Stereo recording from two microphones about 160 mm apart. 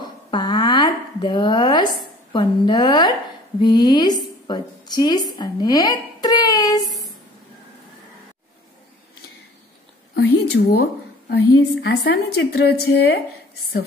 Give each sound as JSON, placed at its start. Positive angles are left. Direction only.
{"t": 0.0, "sound": "a sound", "side_deg": 25}
{"t": 2.3, "sound": "a woman's voice", "side_deg": 30}
{"t": 10.1, "sound": "a woman's voice", "side_deg": 90}